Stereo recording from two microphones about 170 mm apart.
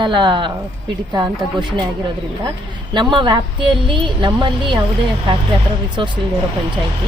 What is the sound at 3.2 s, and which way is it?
Speech, 25° right (ahead or behind).